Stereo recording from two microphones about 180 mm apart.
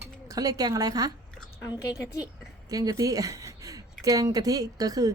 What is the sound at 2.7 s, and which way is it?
Speech, 20° right (ahead or behind).